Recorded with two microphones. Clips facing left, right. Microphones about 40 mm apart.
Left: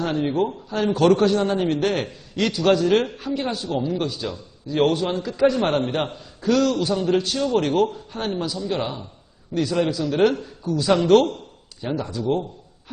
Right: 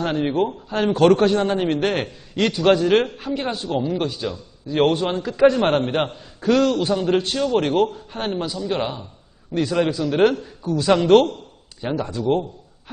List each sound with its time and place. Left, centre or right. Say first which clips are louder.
0.0 s a man's voice: right 1 dB; right